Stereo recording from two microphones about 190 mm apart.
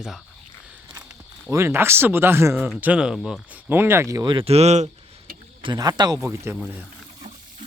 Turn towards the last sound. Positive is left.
turn(degrees=-15)  # may be behind; listen again after turning